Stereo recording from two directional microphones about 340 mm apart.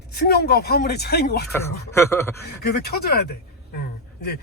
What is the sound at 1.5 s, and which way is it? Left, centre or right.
Speech, centre.